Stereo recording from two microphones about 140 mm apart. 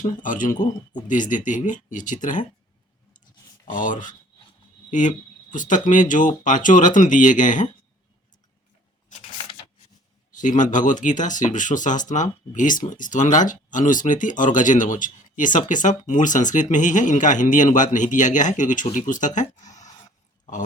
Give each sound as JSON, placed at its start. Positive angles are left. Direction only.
{"t": 0.0, "sound": "speech", "side_deg": 70}
{"t": 3.7, "sound": "speech", "side_deg": 70}
{"t": 9.0, "sound": "a sound", "side_deg": 45}
{"t": 10.3, "sound": "speech", "side_deg": 65}